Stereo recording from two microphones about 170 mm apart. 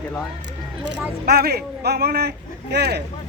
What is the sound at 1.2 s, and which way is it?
Speech, 65° right (ahead or behind).